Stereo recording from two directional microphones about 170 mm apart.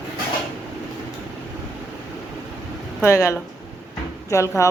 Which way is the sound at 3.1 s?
15° left (ahead or behind).